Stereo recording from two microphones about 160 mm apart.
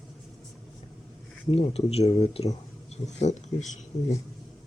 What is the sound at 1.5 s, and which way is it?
Speech, 35° left (ahead or behind).